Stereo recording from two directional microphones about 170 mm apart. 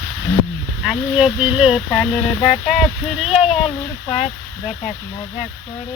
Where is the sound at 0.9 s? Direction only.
Centre (ahead or behind).